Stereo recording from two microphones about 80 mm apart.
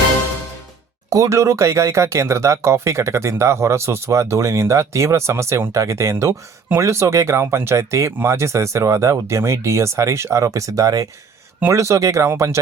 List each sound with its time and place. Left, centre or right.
1.1 s speech: right